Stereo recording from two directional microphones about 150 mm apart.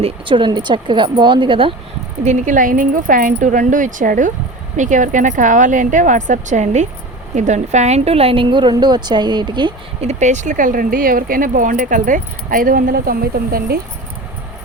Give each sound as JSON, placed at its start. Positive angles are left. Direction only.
{"t": 0.0, "sound": "a woman's voice", "side_deg": -35}
{"t": 2.2, "sound": "a woman's voice", "side_deg": -55}
{"t": 10.0, "sound": "speech", "side_deg": -50}